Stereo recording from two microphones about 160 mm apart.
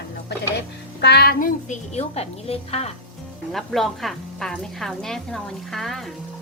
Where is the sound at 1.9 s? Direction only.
40° left (ahead or behind).